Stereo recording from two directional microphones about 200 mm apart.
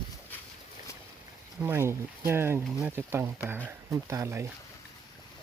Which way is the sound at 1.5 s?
10° right (ahead or behind).